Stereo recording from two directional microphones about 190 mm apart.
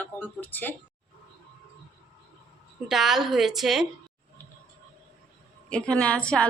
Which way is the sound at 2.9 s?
Centre (ahead or behind).